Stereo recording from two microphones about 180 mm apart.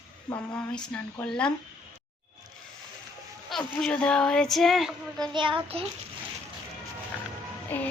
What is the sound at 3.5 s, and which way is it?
A child's voice, 5° left (ahead or behind).